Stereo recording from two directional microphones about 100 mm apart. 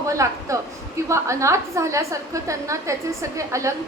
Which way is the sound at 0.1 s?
30° right (ahead or behind).